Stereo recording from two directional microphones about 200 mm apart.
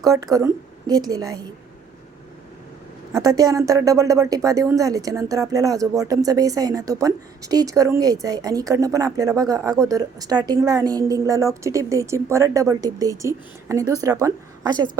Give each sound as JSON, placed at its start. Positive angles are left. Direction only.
{"t": 0.0, "sound": "a woman's voice", "side_deg": -15}
{"t": 3.1, "sound": "speech", "side_deg": -20}